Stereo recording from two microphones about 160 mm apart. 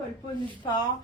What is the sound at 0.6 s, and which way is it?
Speech, 30° left (ahead or behind).